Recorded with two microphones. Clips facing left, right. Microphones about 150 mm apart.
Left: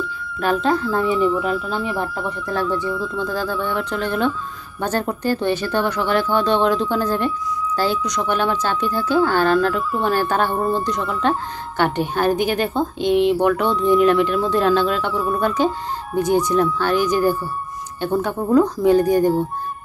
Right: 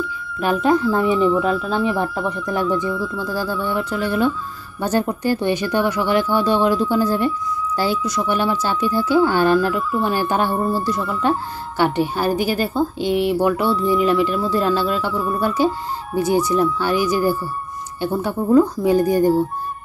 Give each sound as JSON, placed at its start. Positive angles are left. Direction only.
{"t": 0.4, "sound": "speech", "side_deg": -10}
{"t": 10.6, "sound": "a sound", "side_deg": -5}
{"t": 11.8, "sound": "speech", "side_deg": -10}